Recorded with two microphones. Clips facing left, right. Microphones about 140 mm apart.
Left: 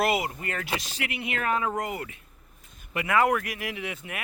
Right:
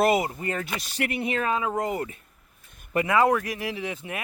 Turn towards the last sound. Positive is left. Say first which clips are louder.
# right 3 dB
turn(degrees=-30)  # may be behind; listen again after turning